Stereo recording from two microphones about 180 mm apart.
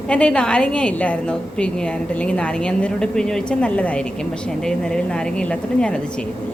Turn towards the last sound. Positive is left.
turn(degrees=5)  # may be behind; listen again after turning